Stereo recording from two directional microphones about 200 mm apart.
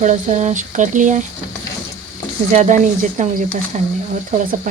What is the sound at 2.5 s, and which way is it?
Speech, 35° right (ahead or behind).